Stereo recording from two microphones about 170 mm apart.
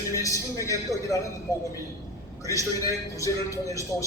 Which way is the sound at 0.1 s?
20° left (ahead or behind).